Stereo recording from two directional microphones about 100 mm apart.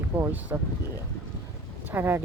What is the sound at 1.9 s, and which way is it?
Speech, 20° right (ahead or behind).